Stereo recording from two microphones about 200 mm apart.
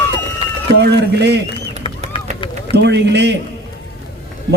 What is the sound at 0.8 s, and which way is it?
Speech, 60° right (ahead or behind).